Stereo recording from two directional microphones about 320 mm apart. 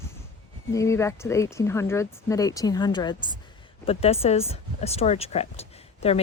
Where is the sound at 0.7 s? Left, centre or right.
Centre.